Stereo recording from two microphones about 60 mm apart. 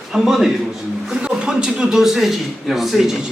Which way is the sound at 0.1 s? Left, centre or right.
Centre.